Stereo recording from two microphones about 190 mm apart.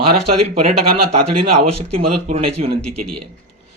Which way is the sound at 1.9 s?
30° right (ahead or behind).